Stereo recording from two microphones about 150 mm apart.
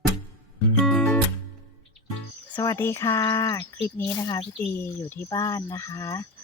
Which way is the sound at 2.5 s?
20° left (ahead or behind).